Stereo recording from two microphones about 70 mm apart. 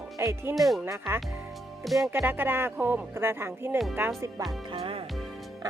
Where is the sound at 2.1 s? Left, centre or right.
Right.